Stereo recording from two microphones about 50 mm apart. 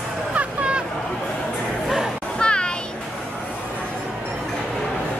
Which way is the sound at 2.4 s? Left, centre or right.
Centre.